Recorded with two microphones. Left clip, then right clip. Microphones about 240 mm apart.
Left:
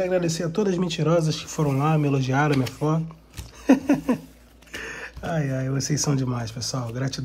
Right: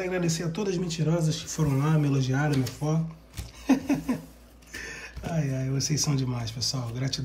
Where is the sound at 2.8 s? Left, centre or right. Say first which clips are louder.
Left 8 dB; left.